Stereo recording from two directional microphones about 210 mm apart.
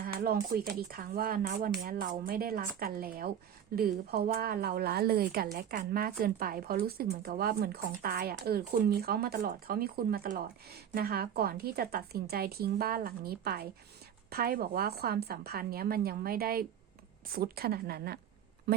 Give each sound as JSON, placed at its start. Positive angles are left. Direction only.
{"t": 0.0, "sound": "a woman's voice", "side_deg": -45}